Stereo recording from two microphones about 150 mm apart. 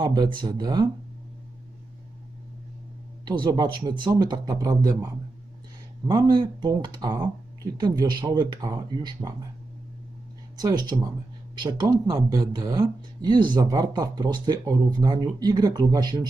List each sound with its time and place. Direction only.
0.0 s speech: 30° right (ahead or behind)
3.2 s speech: 30° right (ahead or behind)
10.6 s speech: 25° right (ahead or behind)